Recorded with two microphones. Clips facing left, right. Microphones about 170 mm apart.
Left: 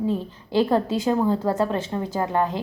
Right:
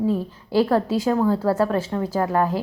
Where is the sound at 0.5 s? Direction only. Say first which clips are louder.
Right 1 dB; 20° left (ahead or behind).